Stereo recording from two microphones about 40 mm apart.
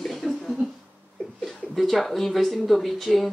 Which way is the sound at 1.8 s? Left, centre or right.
Centre.